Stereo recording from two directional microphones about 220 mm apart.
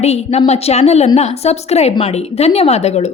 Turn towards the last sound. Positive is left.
turn(degrees=30)  # may be behind; listen again after turning